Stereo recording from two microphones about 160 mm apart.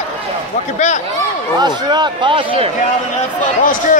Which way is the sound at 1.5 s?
25° right (ahead or behind).